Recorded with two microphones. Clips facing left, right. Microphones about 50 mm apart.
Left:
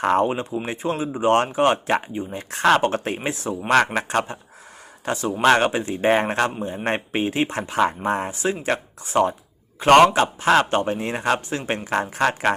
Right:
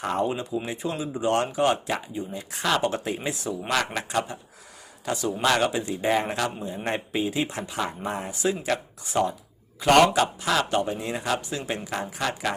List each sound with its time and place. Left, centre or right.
0.0 s speech: left